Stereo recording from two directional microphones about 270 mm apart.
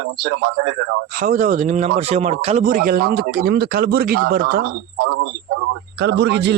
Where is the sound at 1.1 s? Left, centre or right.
Right.